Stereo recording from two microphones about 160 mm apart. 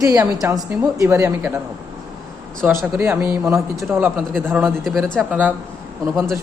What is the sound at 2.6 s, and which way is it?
Speech, 10° right (ahead or behind).